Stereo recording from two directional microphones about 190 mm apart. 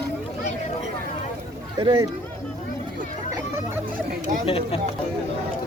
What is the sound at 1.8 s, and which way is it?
Speech, 20° right (ahead or behind).